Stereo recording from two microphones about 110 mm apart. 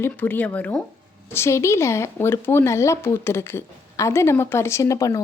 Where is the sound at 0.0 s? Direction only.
15° left (ahead or behind).